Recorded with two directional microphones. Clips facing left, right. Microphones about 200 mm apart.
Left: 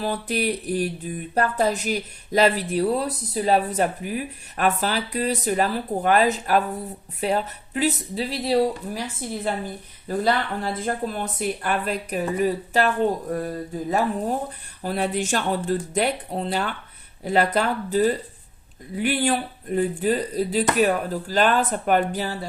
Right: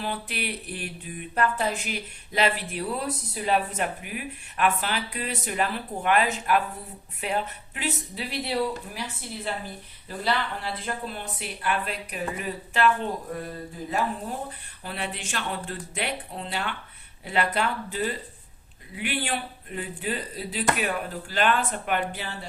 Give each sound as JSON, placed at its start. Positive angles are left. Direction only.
{"t": 0.0, "sound": "speech", "side_deg": 40}
{"t": 14.8, "sound": "speech", "side_deg": 40}